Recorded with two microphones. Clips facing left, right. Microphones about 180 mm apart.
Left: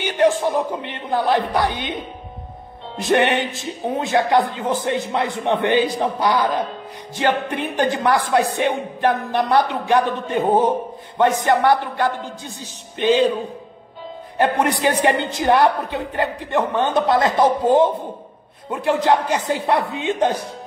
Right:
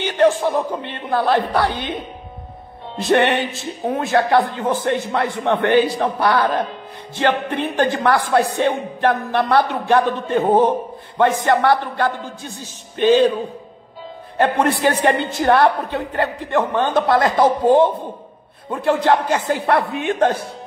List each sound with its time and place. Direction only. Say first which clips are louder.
0.0 s a woman's voice: right 1 dB; 15° left (ahead or behind)
3.0 s a woman's voice: right 1 dB; 15° left (ahead or behind)
11.1 s a woman's voice: right 1 dB; 20° left (ahead or behind)
14.3 s a woman's voice: right 1 dB; 15° left (ahead or behind)